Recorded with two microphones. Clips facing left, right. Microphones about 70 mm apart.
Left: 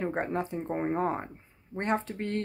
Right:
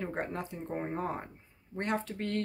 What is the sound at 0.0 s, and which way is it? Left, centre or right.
Speech, left.